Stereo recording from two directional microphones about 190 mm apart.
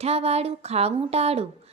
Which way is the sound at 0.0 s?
35° right (ahead or behind).